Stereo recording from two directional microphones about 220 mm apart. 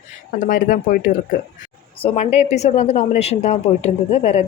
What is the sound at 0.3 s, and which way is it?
A woman's voice, 35° left (ahead or behind).